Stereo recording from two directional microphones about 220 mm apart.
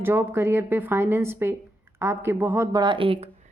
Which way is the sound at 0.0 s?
10° right (ahead or behind).